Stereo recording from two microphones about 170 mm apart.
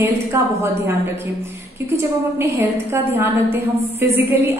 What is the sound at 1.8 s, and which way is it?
A woman's voice, 15° right (ahead or behind).